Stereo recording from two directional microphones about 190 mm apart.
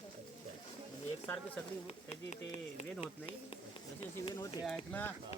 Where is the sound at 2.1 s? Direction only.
35° left (ahead or behind).